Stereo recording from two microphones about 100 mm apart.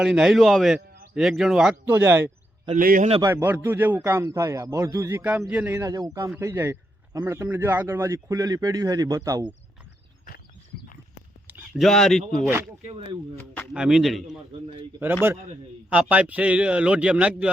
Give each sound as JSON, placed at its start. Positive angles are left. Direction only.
{"t": 0.0, "sound": "a man's voice", "side_deg": -5}
{"t": 1.7, "sound": "a man's voice", "side_deg": -20}
{"t": 5.3, "sound": "a man's voice", "side_deg": -10}
{"t": 5.8, "sound": "a man's voice", "side_deg": -35}
{"t": 11.7, "sound": "a man's voice", "side_deg": 0}
{"t": 12.8, "sound": "speech", "side_deg": -65}
{"t": 13.7, "sound": "a man's voice", "side_deg": -5}
{"t": 15.9, "sound": "a man's voice", "side_deg": -15}